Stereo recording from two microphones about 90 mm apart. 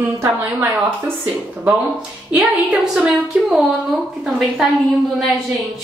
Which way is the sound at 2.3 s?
10° right (ahead or behind).